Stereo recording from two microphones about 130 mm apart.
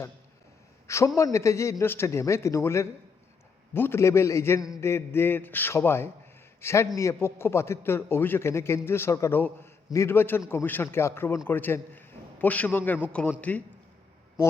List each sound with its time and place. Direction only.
0.9 s a man's voice: 20° left (ahead or behind); by 13.3 s 5° left (ahead or behind)